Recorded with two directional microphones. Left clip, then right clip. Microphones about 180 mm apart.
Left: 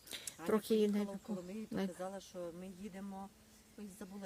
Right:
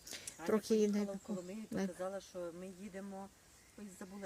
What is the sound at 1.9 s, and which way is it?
Speech, 65° left (ahead or behind).